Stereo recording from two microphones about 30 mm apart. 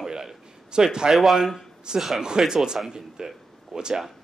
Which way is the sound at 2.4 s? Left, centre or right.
Centre.